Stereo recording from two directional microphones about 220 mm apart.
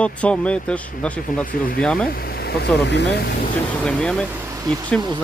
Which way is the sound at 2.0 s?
45° left (ahead or behind).